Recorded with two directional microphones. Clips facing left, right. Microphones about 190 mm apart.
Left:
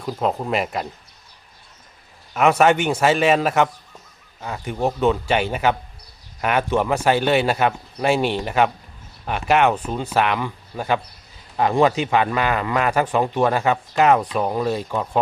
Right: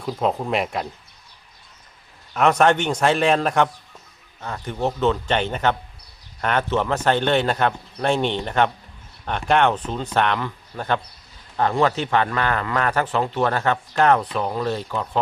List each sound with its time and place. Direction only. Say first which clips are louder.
0.0 s a man's voice: even; centre (ahead or behind)
2.3 s a man's voice: left 1 dB; 5° left (ahead or behind)